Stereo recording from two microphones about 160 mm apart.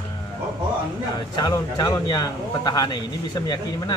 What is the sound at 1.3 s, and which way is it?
Speech, 25° left (ahead or behind).